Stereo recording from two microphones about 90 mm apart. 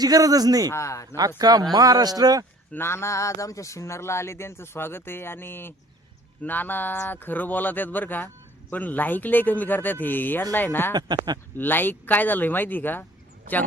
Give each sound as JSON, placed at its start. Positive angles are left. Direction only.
{"t": 0.0, "sound": "speech", "side_deg": -45}
{"t": 0.7, "sound": "speech", "side_deg": 35}
{"t": 1.4, "sound": "speech", "side_deg": -45}
{"t": 2.7, "sound": "speech", "side_deg": 30}
{"t": 10.9, "sound": "speech", "side_deg": -50}
{"t": 11.5, "sound": "speech", "side_deg": 20}